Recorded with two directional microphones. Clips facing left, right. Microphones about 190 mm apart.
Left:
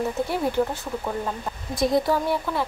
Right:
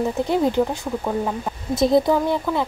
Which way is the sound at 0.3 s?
20° right (ahead or behind).